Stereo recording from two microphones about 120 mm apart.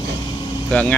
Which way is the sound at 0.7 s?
10° left (ahead or behind).